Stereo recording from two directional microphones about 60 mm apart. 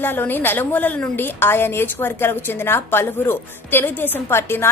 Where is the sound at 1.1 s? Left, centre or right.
Left.